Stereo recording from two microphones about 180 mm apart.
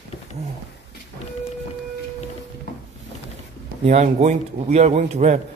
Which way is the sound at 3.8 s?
40° right (ahead or behind).